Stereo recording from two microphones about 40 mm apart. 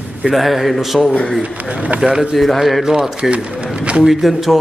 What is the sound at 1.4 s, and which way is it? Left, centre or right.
Speech, right.